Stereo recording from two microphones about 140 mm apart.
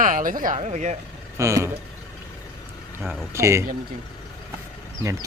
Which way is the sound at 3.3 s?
20° right (ahead or behind).